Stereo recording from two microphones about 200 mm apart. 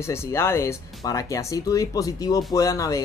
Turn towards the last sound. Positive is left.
turn(degrees=15)  # may be behind; listen again after turning